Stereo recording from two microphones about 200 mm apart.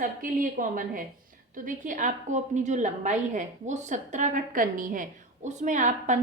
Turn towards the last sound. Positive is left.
turn(degrees=-40)  # may be behind; listen again after turning